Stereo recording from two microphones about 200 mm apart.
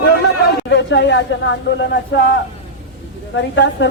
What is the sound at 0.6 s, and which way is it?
A woman's voice, 60° left (ahead or behind).